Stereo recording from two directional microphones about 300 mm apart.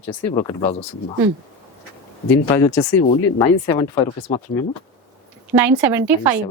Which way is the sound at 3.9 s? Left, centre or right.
Centre.